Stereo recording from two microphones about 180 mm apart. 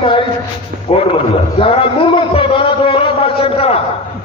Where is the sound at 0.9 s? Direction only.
35° left (ahead or behind).